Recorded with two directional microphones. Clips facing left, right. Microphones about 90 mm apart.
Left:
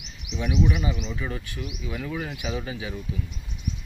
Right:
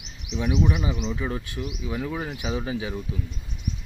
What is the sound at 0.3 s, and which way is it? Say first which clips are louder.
Speech: right 1 dB; 25° right (ahead or behind).